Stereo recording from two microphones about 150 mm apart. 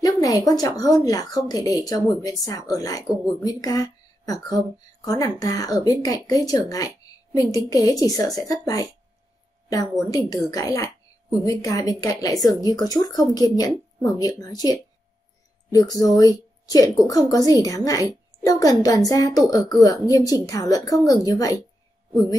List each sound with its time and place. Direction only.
0.0 s speech: 25° left (ahead or behind)